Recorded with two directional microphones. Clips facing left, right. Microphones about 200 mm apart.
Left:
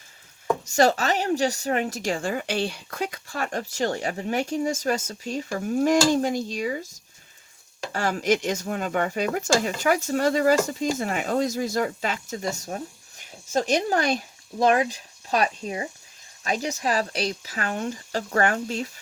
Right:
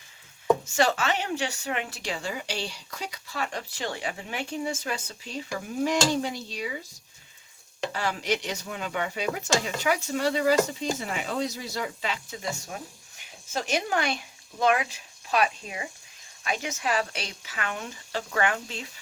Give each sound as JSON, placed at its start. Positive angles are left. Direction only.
{"t": 0.6, "sound": "a woman's voice", "side_deg": 40}